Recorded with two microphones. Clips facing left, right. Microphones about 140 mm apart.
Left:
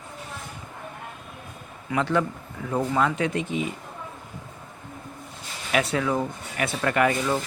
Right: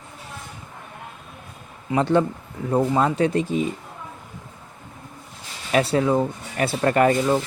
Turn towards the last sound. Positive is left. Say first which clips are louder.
# right 5 dB
turn(degrees=-35)  # may be behind; listen again after turning